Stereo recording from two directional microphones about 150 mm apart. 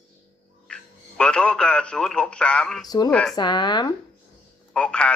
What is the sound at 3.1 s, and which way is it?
Speech, 5° left (ahead or behind).